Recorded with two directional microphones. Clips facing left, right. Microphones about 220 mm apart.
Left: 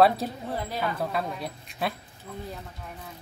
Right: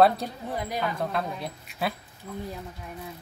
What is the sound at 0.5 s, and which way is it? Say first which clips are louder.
Speech: right 4 dB; 15° right (ahead or behind).